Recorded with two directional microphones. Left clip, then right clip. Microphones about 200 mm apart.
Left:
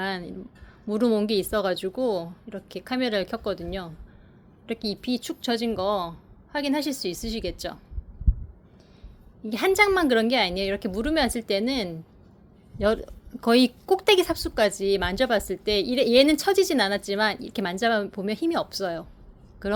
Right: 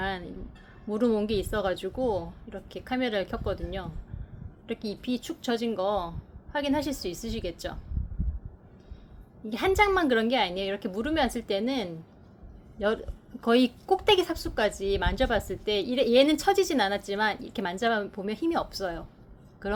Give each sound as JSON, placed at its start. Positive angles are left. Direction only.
{"t": 0.0, "sound": "a sound", "side_deg": 40}
{"t": 0.9, "sound": "speech", "side_deg": 35}
{"t": 9.4, "sound": "speech", "side_deg": 40}